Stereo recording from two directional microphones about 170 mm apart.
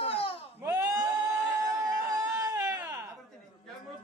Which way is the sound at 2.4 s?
20° right (ahead or behind).